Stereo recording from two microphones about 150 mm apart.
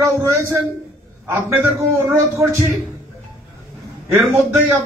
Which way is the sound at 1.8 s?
20° right (ahead or behind).